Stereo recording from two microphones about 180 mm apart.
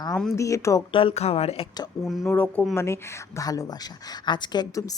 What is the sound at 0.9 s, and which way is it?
Speech, 30° left (ahead or behind).